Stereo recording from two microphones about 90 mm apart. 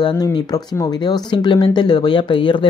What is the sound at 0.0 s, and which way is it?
Speech, 50° left (ahead or behind).